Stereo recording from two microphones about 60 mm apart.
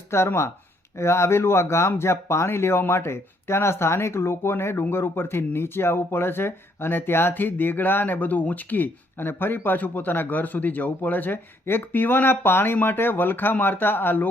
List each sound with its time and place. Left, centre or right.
0.1 s speech: left